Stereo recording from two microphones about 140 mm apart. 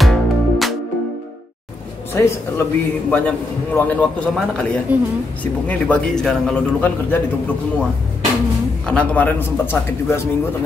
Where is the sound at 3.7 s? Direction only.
10° left (ahead or behind).